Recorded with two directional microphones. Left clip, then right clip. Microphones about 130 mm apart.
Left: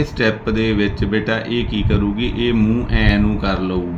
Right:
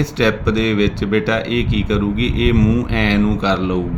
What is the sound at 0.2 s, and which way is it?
Speech, 50° right (ahead or behind).